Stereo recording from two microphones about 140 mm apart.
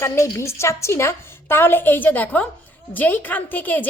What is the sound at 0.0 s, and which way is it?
A woman's voice, 20° left (ahead or behind).